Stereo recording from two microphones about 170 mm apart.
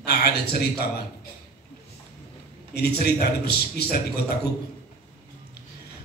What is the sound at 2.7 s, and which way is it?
A man's voice, 70° left (ahead or behind).